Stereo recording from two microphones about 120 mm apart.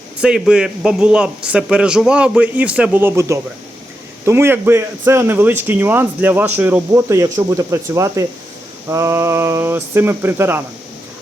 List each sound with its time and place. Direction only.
0.2 s a man's voice: 5° right (ahead or behind)